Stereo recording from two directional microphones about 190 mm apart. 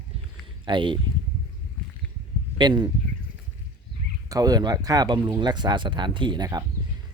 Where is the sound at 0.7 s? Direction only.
25° right (ahead or behind).